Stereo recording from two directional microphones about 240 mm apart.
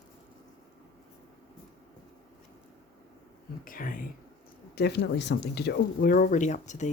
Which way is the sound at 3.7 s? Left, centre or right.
Left.